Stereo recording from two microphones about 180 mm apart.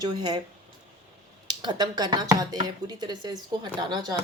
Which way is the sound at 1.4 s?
25° right (ahead or behind).